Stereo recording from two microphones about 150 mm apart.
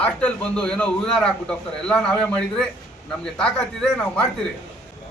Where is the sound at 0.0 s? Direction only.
10° left (ahead or behind).